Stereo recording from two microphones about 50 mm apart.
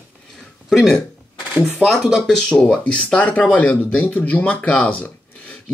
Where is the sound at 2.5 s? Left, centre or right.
Centre.